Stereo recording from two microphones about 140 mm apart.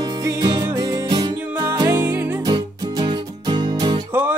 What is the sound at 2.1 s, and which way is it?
Music, 15° right (ahead or behind).